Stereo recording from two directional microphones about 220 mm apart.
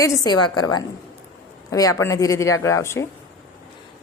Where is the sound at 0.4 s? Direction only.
20° left (ahead or behind).